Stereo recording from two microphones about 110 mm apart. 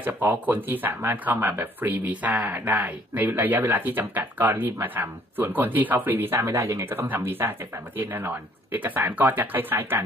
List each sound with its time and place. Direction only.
0.0 s speech: 15° right (ahead or behind)